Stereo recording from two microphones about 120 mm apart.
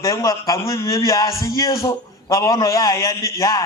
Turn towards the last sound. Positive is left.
turn(degrees=30)  # may be behind; listen again after turning